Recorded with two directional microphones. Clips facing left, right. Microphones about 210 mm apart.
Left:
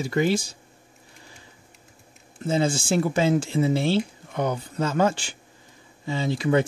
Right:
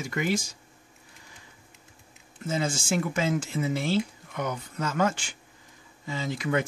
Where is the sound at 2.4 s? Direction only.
30° left (ahead or behind).